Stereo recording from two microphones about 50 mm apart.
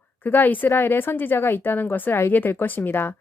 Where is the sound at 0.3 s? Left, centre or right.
Left.